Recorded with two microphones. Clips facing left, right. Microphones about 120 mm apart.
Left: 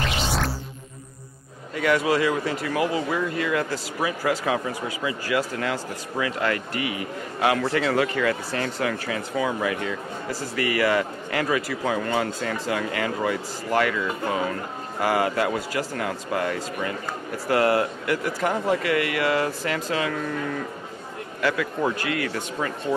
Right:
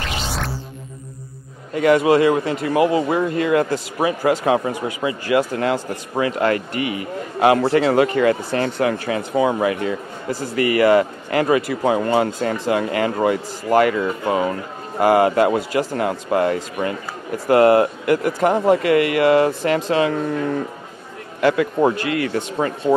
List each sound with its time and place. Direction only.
1.8 s speech: 35° right (ahead or behind)
2.0 s a man's voice: 50° right (ahead or behind); by 5.8 s 25° right (ahead or behind)
6.1 s speech: 35° right (ahead or behind)
11.6 s speech: 25° right (ahead or behind)